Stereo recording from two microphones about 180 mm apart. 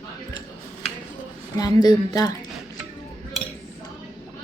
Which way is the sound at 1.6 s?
20° left (ahead or behind).